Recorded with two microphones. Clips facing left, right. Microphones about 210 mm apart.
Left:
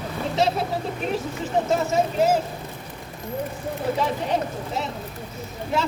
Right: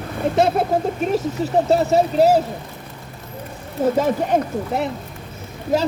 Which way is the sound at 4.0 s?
55° right (ahead or behind).